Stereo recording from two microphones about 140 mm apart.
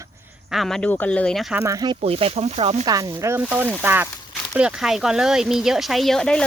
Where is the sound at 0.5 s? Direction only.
Centre (ahead or behind).